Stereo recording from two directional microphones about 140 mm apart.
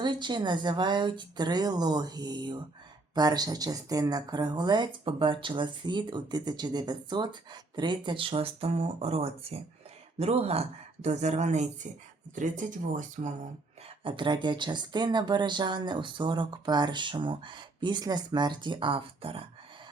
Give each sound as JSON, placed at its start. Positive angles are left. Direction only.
{"t": 0.0, "sound": "speech", "side_deg": -35}
{"t": 14.0, "sound": "speech", "side_deg": -35}